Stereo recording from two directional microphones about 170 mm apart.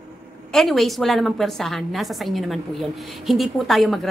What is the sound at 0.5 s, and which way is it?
A woman's voice, centre (ahead or behind).